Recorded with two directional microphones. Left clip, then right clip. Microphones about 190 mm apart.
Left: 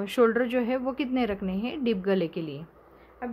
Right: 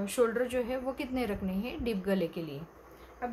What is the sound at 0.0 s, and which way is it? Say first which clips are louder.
A woman's voice: left 6 dB; 50° left (ahead or behind).